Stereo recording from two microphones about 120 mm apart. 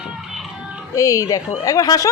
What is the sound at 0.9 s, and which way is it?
Speech, 30° left (ahead or behind).